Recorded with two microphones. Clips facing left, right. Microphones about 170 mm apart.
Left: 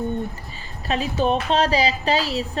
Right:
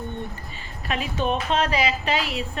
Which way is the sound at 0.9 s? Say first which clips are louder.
Left 4 dB; 30° left (ahead or behind).